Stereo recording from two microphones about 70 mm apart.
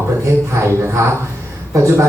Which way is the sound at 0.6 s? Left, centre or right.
Right.